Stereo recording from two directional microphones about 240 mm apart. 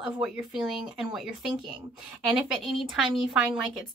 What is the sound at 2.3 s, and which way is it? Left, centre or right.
A woman's voice, centre.